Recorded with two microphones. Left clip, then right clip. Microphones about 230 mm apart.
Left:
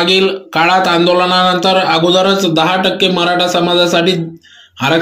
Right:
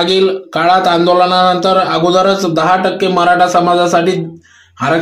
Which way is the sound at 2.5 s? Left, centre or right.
Centre.